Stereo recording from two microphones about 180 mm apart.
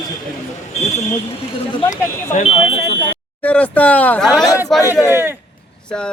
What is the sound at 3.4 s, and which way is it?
Speech, 10° left (ahead or behind).